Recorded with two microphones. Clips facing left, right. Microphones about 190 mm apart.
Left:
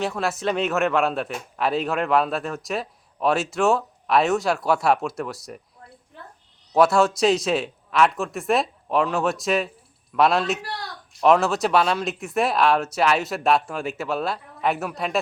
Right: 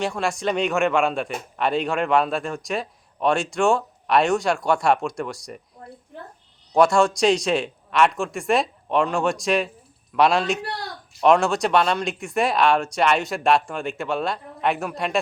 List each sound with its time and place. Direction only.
0.0 s a man's voice: centre (ahead or behind)
6.7 s a man's voice: 5° left (ahead or behind)